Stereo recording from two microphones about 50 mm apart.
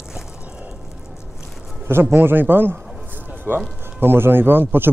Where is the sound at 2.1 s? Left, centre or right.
Right.